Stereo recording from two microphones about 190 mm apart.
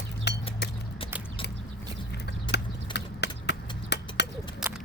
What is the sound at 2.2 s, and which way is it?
Clip-clop, 60° left (ahead or behind).